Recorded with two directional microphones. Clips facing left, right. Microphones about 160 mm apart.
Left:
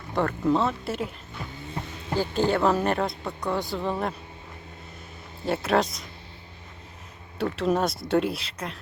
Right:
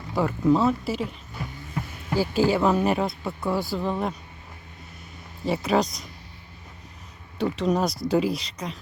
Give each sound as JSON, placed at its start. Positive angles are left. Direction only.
{"t": 0.1, "sound": "speech", "side_deg": -5}
{"t": 1.6, "sound": "hum", "side_deg": 25}
{"t": 2.1, "sound": "speech", "side_deg": -5}
{"t": 5.5, "sound": "speech", "side_deg": 0}
{"t": 7.3, "sound": "speech", "side_deg": 0}